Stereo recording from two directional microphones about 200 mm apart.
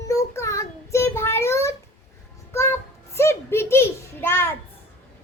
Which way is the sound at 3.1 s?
10° left (ahead or behind).